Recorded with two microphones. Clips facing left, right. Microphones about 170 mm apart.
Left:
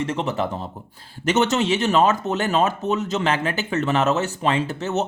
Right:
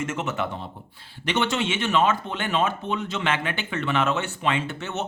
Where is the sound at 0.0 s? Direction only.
30° left (ahead or behind).